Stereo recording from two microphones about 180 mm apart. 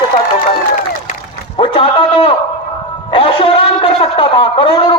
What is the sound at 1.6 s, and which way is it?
Speech, 30° left (ahead or behind).